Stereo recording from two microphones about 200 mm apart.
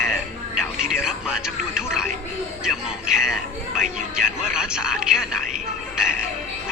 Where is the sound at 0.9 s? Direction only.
5° right (ahead or behind).